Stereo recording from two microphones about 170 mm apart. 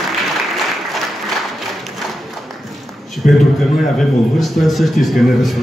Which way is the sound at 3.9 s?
Centre (ahead or behind).